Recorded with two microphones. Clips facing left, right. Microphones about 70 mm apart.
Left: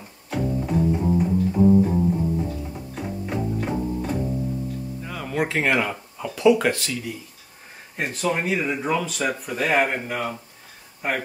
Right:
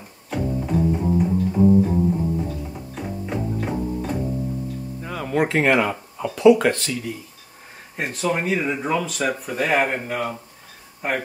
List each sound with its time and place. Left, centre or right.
0.3 s music: centre
5.0 s a sound: right; by 6.3 s centre
6.3 s speech: centre
8.0 s speech: centre